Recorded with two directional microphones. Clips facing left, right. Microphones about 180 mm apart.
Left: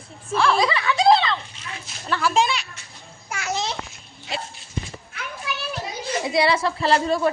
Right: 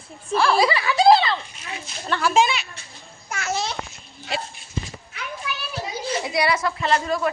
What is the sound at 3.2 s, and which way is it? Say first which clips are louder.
Babbling: even; 15° left (ahead or behind).